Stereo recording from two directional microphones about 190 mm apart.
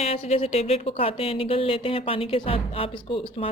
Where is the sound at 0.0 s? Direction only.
35° left (ahead or behind).